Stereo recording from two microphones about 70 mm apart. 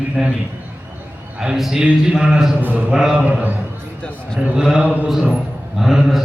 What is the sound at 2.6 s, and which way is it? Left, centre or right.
Speech, right.